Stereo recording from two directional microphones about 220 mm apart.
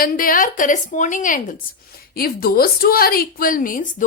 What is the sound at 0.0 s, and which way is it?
A woman's voice, 40° left (ahead or behind).